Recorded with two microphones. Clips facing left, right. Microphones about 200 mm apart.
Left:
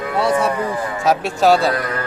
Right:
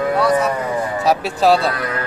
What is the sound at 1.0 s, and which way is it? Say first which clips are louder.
Speech: left 1 dB; centre (ahead or behind).